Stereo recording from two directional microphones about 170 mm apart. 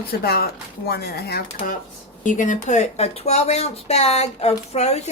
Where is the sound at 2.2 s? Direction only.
50° left (ahead or behind).